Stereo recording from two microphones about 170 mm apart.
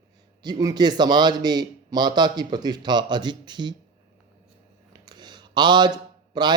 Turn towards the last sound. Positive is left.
turn(degrees=-25)  # may be behind; listen again after turning